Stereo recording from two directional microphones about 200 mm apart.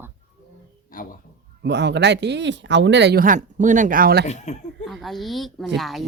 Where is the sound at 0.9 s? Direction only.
45° left (ahead or behind).